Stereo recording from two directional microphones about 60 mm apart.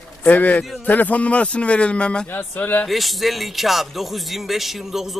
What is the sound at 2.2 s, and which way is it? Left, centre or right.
Speech, left.